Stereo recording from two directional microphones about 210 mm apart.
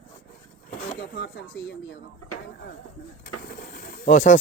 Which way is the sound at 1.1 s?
55° left (ahead or behind).